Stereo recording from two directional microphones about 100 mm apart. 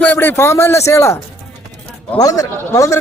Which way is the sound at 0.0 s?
20° left (ahead or behind).